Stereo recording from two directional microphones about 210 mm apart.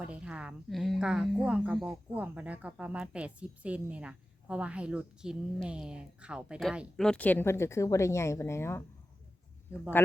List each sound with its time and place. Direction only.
0.0 s a woman's voice: 5° right (ahead or behind); by 8.8 s 10° left (ahead or behind)